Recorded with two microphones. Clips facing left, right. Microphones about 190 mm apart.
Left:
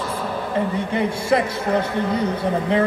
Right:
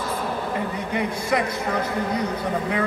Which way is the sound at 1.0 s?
25° left (ahead or behind).